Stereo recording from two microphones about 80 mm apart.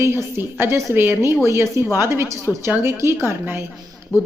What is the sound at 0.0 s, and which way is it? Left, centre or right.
A woman's voice, right.